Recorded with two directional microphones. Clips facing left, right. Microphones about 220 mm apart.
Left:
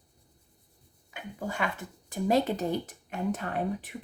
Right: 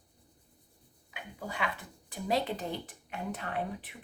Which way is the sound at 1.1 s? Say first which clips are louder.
Left 5 dB; 45° left (ahead or behind).